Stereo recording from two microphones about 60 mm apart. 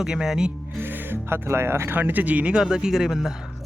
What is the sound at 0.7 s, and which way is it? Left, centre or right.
Speech, right.